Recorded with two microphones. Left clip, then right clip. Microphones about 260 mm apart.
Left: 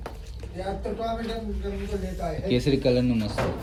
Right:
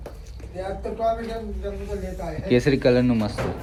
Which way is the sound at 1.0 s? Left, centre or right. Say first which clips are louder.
Right 5 dB; centre.